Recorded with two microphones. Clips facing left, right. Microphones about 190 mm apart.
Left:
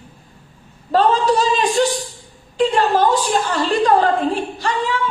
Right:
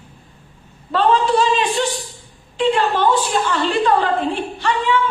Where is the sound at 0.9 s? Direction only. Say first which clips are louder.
Left 1 dB; 40° left (ahead or behind).